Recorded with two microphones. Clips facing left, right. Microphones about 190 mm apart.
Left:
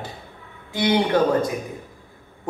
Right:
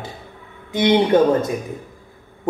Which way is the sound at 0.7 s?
20° right (ahead or behind).